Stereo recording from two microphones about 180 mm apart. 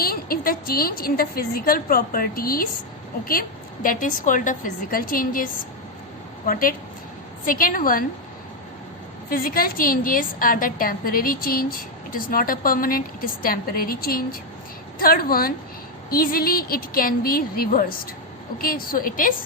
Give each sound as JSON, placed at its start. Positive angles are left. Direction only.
{"t": 0.0, "sound": "a woman's voice", "side_deg": 55}
{"t": 3.8, "sound": "a woman's voice", "side_deg": 45}
{"t": 9.3, "sound": "a woman's voice", "side_deg": 55}